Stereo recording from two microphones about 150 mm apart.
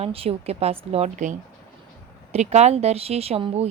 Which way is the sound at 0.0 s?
40° right (ahead or behind).